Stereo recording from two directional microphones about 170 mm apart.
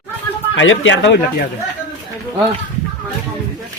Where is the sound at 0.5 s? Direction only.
90° left.